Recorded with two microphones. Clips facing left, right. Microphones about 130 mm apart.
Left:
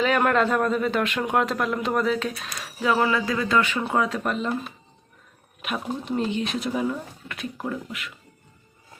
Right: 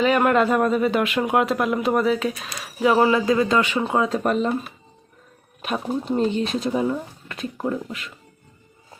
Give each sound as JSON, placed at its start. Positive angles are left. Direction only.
{"t": 0.0, "sound": "a man's voice", "side_deg": -5}
{"t": 2.8, "sound": "speech", "side_deg": -20}
{"t": 4.2, "sound": "speech", "side_deg": -45}
{"t": 5.6, "sound": "speech", "side_deg": -35}